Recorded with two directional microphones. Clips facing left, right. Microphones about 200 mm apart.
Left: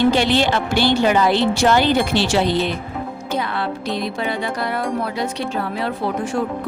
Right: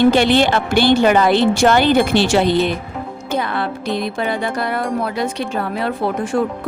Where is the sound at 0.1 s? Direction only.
55° right (ahead or behind).